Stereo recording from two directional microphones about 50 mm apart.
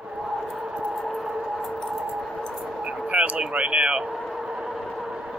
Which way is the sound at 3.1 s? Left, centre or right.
Right.